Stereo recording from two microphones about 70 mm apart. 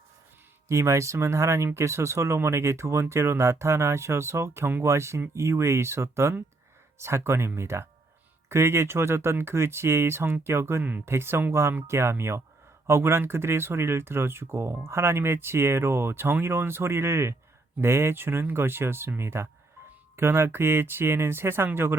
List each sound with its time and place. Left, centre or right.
0.7 s speech: right